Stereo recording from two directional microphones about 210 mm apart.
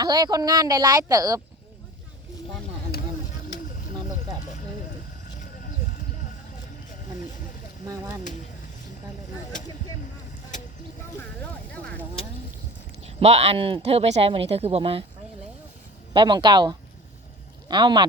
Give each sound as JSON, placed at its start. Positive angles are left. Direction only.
{"t": 0.0, "sound": "speech", "side_deg": -20}
{"t": 7.9, "sound": "speech", "side_deg": -15}
{"t": 11.7, "sound": "a sound", "side_deg": 5}
{"t": 13.1, "sound": "speech", "side_deg": -30}
{"t": 16.1, "sound": "speech", "side_deg": -20}